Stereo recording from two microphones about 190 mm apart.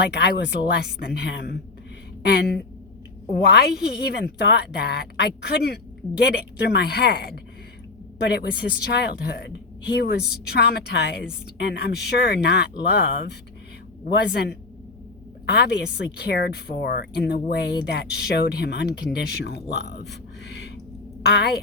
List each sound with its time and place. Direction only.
0.1 s speech: 60° left (ahead or behind)
15.5 s speech: 60° left (ahead or behind)